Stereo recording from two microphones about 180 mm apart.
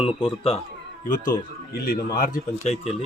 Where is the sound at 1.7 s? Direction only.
55° left (ahead or behind).